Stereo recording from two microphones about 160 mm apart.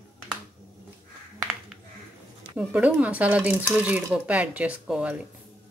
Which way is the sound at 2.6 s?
10° right (ahead or behind).